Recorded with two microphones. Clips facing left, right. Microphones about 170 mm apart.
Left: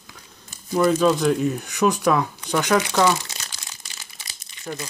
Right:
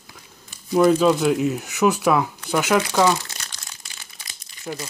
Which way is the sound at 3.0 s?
Centre (ahead or behind).